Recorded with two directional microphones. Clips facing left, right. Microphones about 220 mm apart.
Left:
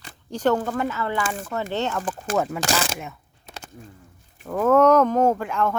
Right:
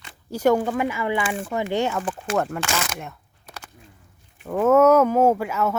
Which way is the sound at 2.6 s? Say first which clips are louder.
Left 3 dB; 40° left (ahead or behind).